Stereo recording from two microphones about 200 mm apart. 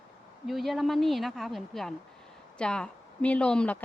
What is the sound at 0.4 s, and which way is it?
Speech, centre (ahead or behind).